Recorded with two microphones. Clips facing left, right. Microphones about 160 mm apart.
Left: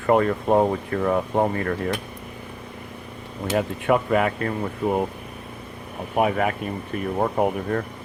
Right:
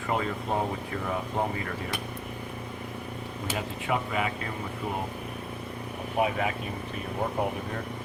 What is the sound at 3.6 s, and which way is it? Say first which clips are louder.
Speech: left 9 dB; 55° left (ahead or behind).